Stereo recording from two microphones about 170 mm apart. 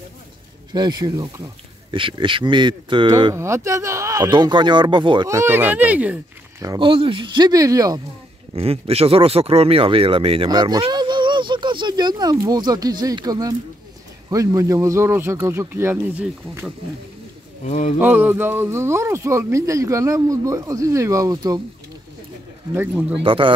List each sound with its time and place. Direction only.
0.7 s speech: 25° right (ahead or behind); by 6.1 s 10° right (ahead or behind)
6.6 s speech: 25° right (ahead or behind)
8.5 s speech: 35° right (ahead or behind); by 16.6 s 15° right (ahead or behind)
17.6 s speech: 40° left (ahead or behind)
18.0 s speech: 10° right (ahead or behind)
22.8 s speech: 10° right (ahead or behind)
23.2 s speech: 30° right (ahead or behind)